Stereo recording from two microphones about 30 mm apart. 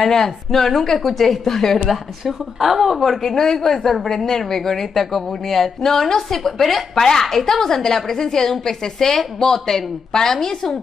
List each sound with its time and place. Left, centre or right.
0.0 s a woman's voice: centre
2.6 s a woman's voice: centre; by 10.8 s left